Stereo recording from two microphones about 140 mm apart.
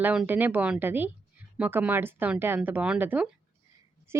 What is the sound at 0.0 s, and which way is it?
A woman's voice, 10° right (ahead or behind).